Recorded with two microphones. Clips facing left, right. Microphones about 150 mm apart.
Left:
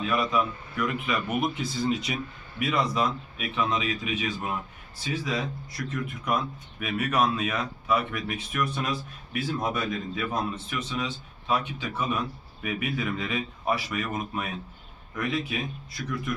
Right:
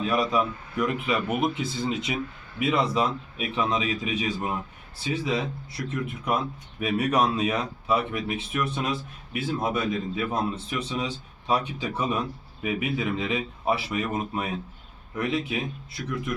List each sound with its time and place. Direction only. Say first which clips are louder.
0.0 s a man's voice: right 2 dB; 35° right (ahead or behind)